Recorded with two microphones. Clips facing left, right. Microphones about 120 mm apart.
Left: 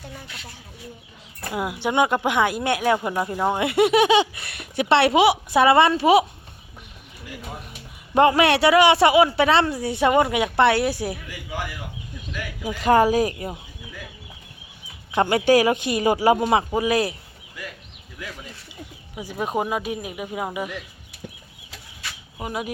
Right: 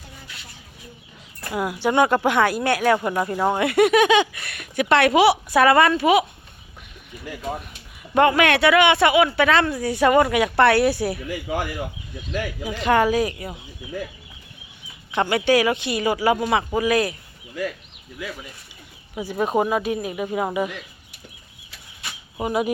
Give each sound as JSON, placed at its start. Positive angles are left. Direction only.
{"t": 1.5, "sound": "speech", "side_deg": 20}
{"t": 3.5, "sound": "speech", "side_deg": 25}
{"t": 8.4, "sound": "speech", "side_deg": 35}
{"t": 12.8, "sound": "speech", "side_deg": 35}
{"t": 15.1, "sound": "speech", "side_deg": 35}
{"t": 19.2, "sound": "speech", "side_deg": 10}
{"t": 22.4, "sound": "speech", "side_deg": -5}